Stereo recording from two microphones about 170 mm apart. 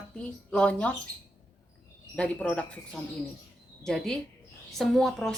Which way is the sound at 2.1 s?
5° left (ahead or behind).